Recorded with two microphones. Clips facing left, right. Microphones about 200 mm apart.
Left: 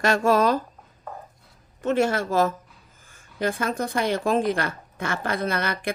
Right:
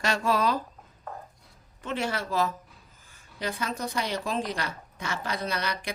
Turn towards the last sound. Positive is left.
turn(degrees=55)  # may be behind; listen again after turning